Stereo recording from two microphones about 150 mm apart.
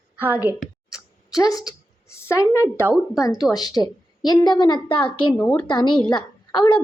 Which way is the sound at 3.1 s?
25° left (ahead or behind).